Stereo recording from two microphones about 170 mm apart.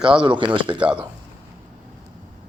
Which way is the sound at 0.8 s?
5° right (ahead or behind).